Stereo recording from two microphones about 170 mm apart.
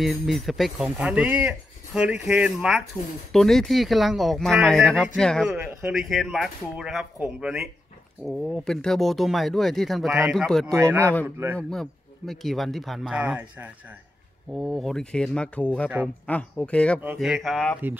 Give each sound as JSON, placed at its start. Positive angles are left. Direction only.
{"t": 0.0, "sound": "speech", "side_deg": 0}
{"t": 10.7, "sound": "speech", "side_deg": -15}
{"t": 11.5, "sound": "speech", "side_deg": 5}
{"t": 14.5, "sound": "speech", "side_deg": 0}
{"t": 17.0, "sound": "speech", "side_deg": -10}